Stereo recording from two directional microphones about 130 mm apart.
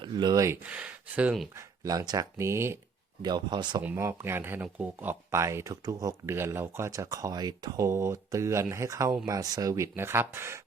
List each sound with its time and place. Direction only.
0.0 s speech: 35° right (ahead or behind)
0.6 s speech: 10° right (ahead or behind)
1.5 s speech: 25° right (ahead or behind)
3.2 s speech: 35° right (ahead or behind)
3.8 s speech: 20° right (ahead or behind)